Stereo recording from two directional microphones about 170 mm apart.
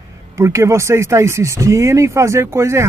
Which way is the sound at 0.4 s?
15° right (ahead or behind).